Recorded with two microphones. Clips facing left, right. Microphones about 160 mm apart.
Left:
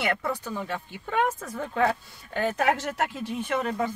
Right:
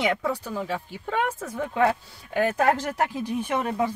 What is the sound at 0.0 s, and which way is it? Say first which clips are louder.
Speech: right 3 dB; 15° right (ahead or behind).